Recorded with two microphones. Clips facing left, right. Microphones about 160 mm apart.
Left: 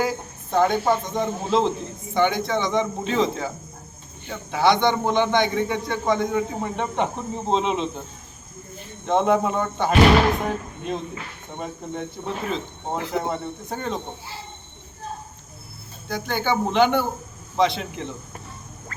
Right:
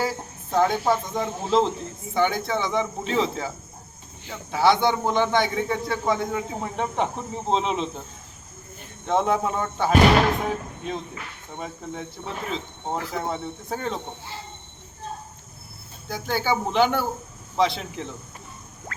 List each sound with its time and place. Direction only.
0.0 s a man's voice: centre (ahead or behind)
9.0 s a man's voice: centre (ahead or behind)
13.0 s speech: 25° left (ahead or behind)
13.2 s a man's voice: centre (ahead or behind)
16.0 s a man's voice: 5° right (ahead or behind)